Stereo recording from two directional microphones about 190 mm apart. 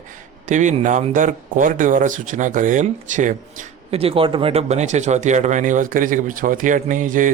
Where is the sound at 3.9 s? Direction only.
30° right (ahead or behind).